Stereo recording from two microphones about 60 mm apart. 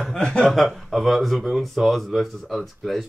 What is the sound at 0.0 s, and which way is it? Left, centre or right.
Chuckle, centre.